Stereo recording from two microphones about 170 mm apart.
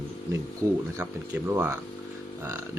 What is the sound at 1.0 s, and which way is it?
Speech, 10° right (ahead or behind).